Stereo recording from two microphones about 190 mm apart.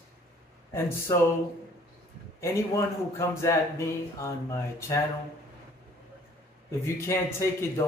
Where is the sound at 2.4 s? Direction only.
15° left (ahead or behind).